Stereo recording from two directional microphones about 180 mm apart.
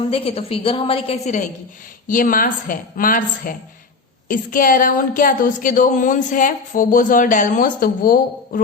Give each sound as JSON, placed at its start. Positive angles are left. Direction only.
{"t": 0.1, "sound": "a woman's voice", "side_deg": 35}
{"t": 2.0, "sound": "speech", "side_deg": 50}